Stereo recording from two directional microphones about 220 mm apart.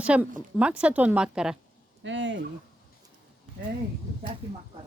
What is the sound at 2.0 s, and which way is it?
Speech, 55° right (ahead or behind).